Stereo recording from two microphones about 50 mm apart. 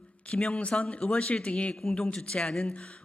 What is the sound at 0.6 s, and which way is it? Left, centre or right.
Speech, left.